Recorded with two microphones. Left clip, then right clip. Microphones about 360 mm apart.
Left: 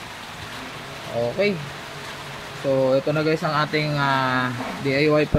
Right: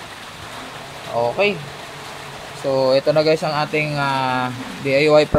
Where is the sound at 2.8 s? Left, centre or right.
Right.